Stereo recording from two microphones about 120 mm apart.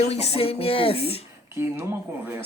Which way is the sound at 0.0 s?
60° left (ahead or behind).